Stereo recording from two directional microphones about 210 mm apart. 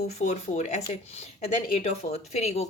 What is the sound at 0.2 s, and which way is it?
A woman's voice, 30° left (ahead or behind).